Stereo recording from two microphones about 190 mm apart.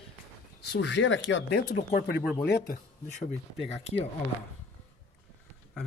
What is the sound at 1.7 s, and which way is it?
Speech, 40° left (ahead or behind).